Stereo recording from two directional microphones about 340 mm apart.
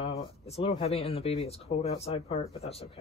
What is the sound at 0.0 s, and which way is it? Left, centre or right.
Speech, centre.